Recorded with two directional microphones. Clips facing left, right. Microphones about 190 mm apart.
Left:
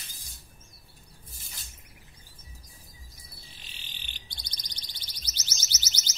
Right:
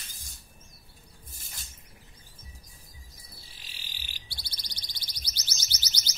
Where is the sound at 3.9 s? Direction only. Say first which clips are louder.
Even; 10° right (ahead or behind).